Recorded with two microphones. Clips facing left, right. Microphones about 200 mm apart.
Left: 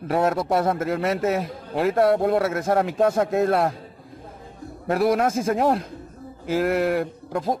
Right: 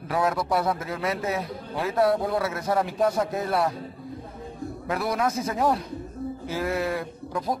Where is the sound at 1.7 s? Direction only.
60° left (ahead or behind).